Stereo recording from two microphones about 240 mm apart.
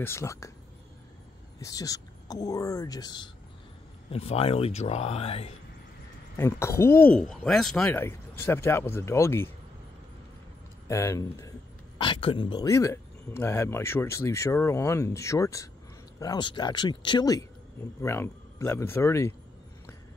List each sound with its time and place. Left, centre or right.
0.0 s speech: centre
1.6 s speech: centre
6.3 s speech: centre
10.9 s speech: centre